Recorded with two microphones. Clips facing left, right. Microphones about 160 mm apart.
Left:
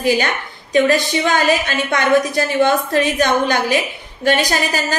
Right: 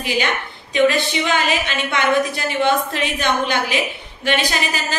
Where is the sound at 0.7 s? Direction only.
45° left (ahead or behind).